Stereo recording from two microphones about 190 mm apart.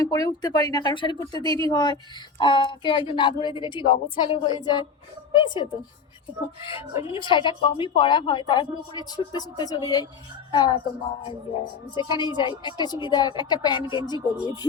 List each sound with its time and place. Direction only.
0.0 s a woman's voice: 20° left (ahead or behind)
7.1 s a woman's voice: 25° left (ahead or behind)
11.9 s a woman's voice: 25° left (ahead or behind)